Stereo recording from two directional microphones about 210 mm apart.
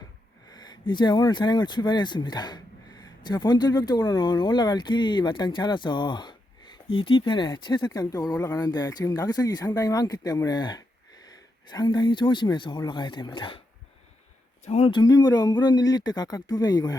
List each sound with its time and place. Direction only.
0.5 s speech: 20° left (ahead or behind)
14.6 s speech: 30° left (ahead or behind)